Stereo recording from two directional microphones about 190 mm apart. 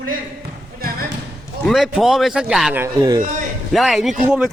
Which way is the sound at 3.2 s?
45° right (ahead or behind).